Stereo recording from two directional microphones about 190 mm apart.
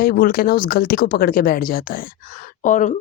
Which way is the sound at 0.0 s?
50° left (ahead or behind).